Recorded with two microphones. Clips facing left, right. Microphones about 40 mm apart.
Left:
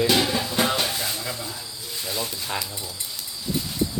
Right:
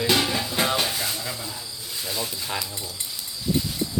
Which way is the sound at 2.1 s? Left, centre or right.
Centre.